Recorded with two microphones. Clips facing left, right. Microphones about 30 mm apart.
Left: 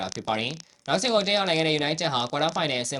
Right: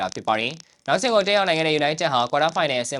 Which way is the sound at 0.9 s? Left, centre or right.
Centre.